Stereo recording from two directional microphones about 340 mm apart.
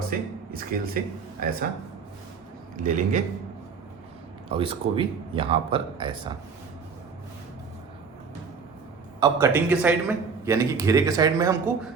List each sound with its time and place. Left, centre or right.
0.1 s a man's voice: right
2.7 s a man's voice: right
4.4 s a man's voice: centre
9.2 s a man's voice: centre